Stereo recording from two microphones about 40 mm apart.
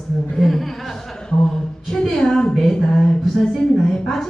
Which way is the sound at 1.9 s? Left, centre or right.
Centre.